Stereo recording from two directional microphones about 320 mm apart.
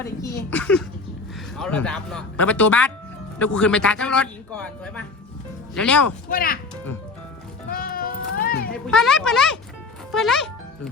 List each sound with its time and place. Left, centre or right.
0.0 s a man's voice: centre
6.3 s speech: left
7.7 s music: left
8.9 s a man's voice: centre